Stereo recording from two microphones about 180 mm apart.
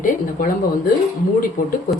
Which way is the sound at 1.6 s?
50° left (ahead or behind).